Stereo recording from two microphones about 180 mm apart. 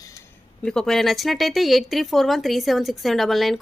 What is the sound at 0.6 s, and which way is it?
Speech, 5° left (ahead or behind).